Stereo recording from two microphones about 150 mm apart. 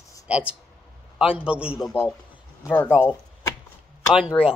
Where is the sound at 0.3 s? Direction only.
10° right (ahead or behind).